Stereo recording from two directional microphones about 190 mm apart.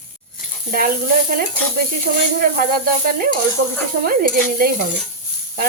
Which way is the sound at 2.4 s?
50° right (ahead or behind).